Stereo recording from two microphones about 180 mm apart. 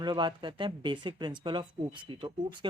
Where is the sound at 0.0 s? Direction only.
25° right (ahead or behind).